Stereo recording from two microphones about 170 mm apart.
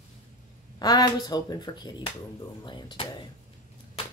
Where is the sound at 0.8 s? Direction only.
25° left (ahead or behind).